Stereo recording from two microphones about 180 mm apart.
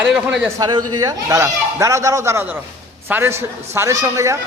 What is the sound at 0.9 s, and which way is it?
Speech, 20° right (ahead or behind).